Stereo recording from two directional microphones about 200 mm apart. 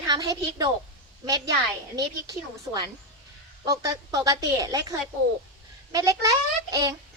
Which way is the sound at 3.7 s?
15° right (ahead or behind).